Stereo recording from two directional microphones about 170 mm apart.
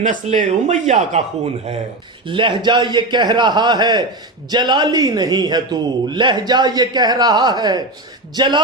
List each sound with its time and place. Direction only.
0.0 s speech: 50° right (ahead or behind)
2.2 s a man's voice: 30° right (ahead or behind)